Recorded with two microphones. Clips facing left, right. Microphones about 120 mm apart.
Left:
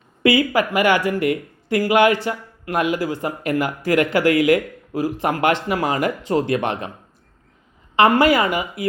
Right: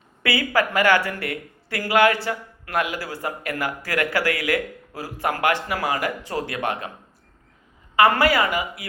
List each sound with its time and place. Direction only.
0.2 s speech: 20° left (ahead or behind)
7.9 s speech: 20° left (ahead or behind)